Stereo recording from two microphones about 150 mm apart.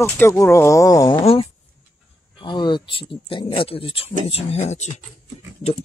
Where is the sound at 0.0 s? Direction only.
15° left (ahead or behind).